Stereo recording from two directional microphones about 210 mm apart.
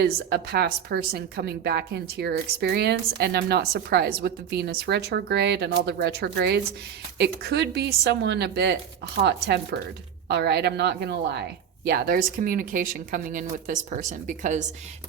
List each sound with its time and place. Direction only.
0.0 s a woman's voice: 50° right (ahead or behind)